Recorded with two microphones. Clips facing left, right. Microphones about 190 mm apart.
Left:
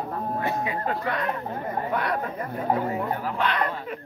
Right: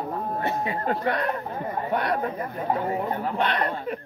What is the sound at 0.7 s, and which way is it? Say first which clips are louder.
Speech: right 2 dB; 35° right (ahead or behind).